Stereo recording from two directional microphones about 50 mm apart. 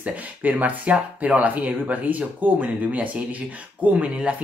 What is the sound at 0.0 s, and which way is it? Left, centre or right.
Speech, right.